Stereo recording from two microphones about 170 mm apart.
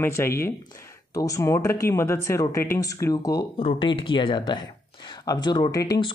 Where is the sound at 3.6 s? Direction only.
30° left (ahead or behind).